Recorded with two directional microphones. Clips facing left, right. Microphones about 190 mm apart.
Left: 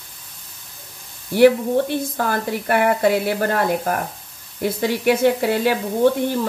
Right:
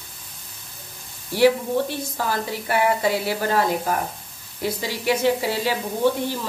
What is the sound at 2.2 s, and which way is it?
Speech, 55° left (ahead or behind).